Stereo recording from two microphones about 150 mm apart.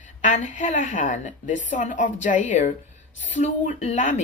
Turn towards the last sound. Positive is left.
turn(degrees=50)  # may be behind; listen again after turning